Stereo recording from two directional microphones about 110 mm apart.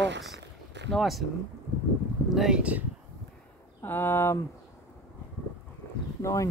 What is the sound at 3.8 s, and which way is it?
Speech, 20° left (ahead or behind).